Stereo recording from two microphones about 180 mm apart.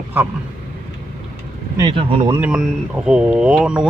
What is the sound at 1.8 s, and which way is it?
Speech, 25° right (ahead or behind).